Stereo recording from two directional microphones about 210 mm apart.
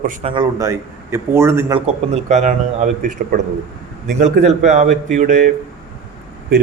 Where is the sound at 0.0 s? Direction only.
35° right (ahead or behind).